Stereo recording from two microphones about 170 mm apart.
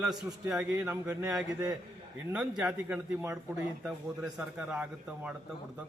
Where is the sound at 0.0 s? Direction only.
Centre (ahead or behind).